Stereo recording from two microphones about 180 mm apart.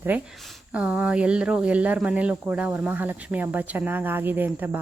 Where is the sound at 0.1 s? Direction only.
10° right (ahead or behind).